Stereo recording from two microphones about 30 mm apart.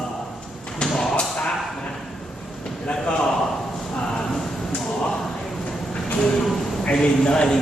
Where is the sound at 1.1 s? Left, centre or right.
Left.